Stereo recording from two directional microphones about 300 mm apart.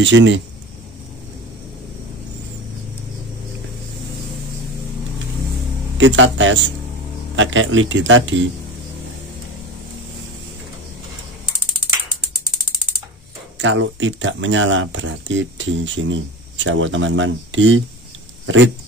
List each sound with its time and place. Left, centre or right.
0.0 s speech: right
5.9 s speech: right
13.6 s speech: right